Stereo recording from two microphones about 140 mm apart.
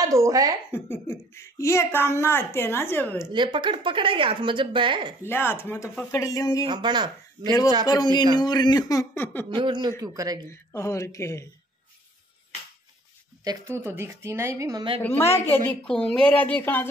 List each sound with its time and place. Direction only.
0.0 s speech: 25° right (ahead or behind)
0.7 s a child's voice: 15° left (ahead or behind)
3.3 s speech: 35° right (ahead or behind)
5.2 s a child's voice: 15° left (ahead or behind)
6.6 s speech: 30° right (ahead or behind)
7.8 s a man's voice: 30° left (ahead or behind); by 9.5 s 15° left (ahead or behind)
9.5 s speech: 35° right (ahead or behind)
10.5 s a man's voice: 20° left (ahead or behind)
13.7 s speech: 15° right (ahead or behind)
15.0 s a child's voice: 15° left (ahead or behind)